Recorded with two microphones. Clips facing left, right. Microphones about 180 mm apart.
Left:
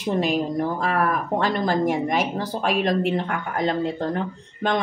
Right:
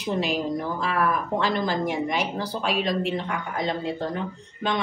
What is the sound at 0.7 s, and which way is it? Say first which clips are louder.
A woman's voice: left 2 dB; 45° left (ahead or behind).